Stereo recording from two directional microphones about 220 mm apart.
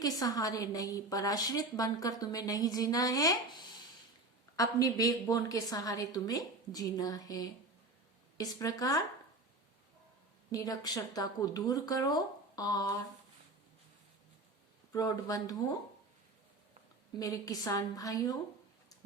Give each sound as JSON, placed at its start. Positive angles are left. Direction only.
{"t": 0.0, "sound": "a woman's voice", "side_deg": 15}
{"t": 4.5, "sound": "a woman's voice", "side_deg": 15}
{"t": 10.5, "sound": "a woman's voice", "side_deg": 15}
{"t": 14.9, "sound": "a woman's voice", "side_deg": 15}
{"t": 17.2, "sound": "a woman's voice", "side_deg": 15}